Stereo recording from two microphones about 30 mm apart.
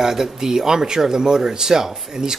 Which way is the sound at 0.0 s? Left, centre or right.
Centre.